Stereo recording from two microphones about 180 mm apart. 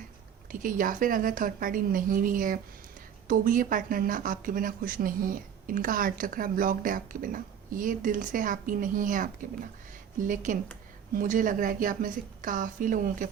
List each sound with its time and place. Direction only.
0.6 s speech: 50° right (ahead or behind)